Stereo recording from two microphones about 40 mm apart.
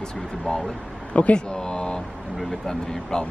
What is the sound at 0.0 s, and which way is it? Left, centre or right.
Speech, centre.